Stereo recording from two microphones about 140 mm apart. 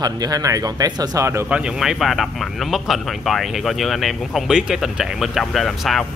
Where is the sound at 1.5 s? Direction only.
5° right (ahead or behind).